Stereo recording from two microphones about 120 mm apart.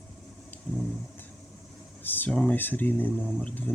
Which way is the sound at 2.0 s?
15° left (ahead or behind).